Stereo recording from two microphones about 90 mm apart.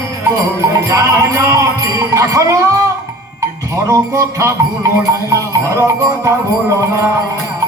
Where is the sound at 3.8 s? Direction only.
35° right (ahead or behind).